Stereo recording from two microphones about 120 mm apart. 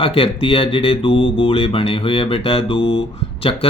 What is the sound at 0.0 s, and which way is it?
Speech, 50° left (ahead or behind).